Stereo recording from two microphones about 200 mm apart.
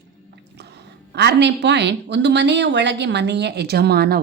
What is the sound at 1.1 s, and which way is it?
Speech, 55° right (ahead or behind).